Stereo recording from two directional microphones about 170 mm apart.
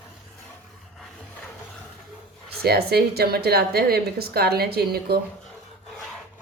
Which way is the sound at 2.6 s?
65° right (ahead or behind).